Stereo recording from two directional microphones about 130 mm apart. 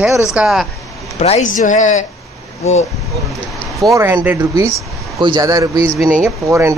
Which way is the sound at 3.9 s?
20° right (ahead or behind).